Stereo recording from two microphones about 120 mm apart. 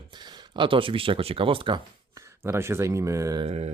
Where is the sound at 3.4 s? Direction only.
60° right (ahead or behind).